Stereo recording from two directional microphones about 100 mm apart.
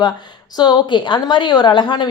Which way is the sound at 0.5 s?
45° left (ahead or behind).